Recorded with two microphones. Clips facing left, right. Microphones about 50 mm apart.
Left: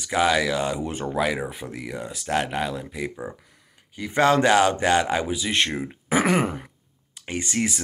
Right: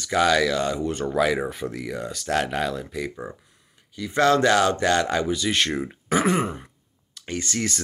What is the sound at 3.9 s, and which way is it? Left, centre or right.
Speech, left.